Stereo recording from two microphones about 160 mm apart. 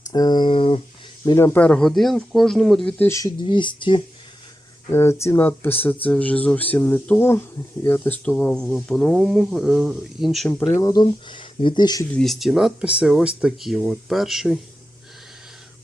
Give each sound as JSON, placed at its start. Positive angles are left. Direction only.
{"t": 0.1, "sound": "speech", "side_deg": 25}
{"t": 1.2, "sound": "speech", "side_deg": 20}
{"t": 3.1, "sound": "speech", "side_deg": 20}
{"t": 4.9, "sound": "speech", "side_deg": 15}
{"t": 10.7, "sound": "speech", "side_deg": 20}
{"t": 12.1, "sound": "speech", "side_deg": 0}